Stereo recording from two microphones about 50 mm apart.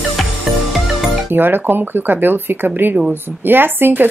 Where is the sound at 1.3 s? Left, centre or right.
Right.